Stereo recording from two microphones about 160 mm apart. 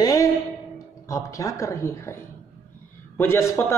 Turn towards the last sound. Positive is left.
turn(degrees=15)  # may be behind; listen again after turning